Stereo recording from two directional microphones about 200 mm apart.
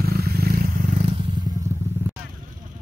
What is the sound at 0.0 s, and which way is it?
Roaring cats, 50° right (ahead or behind).